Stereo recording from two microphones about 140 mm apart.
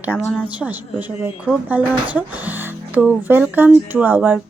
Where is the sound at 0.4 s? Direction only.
10° right (ahead or behind).